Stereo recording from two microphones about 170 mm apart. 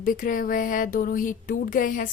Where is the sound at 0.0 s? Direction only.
55° left (ahead or behind).